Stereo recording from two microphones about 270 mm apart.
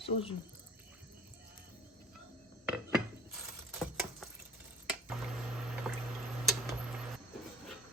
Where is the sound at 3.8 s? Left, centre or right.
Centre.